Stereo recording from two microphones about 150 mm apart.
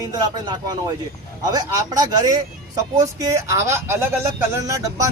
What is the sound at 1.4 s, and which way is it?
Speech, 25° right (ahead or behind).